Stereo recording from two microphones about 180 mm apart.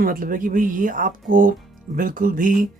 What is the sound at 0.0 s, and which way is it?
Speech, 50° right (ahead or behind).